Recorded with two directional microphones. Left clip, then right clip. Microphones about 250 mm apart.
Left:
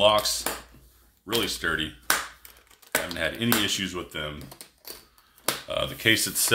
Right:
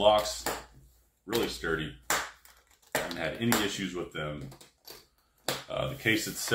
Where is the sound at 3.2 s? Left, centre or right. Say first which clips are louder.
Left 4 dB; left.